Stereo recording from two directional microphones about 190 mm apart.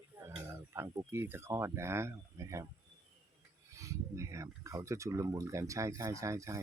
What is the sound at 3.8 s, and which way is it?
Speech, 15° right (ahead or behind).